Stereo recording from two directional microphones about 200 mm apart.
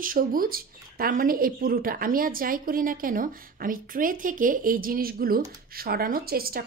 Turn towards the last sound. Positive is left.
turn(degrees=-50)  # may be behind; listen again after turning